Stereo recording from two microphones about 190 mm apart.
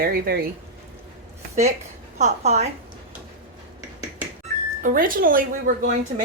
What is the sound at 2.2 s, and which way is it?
Speech, 35° right (ahead or behind).